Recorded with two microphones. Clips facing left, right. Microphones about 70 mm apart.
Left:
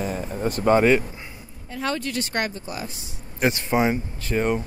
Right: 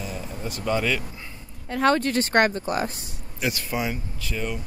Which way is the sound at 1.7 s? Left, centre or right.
Right.